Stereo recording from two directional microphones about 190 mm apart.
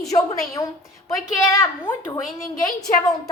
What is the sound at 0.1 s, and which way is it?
A woman's voice, 15° left (ahead or behind).